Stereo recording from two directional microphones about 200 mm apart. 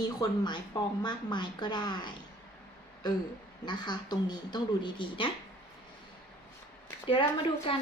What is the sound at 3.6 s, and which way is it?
A woman's voice, 20° left (ahead or behind).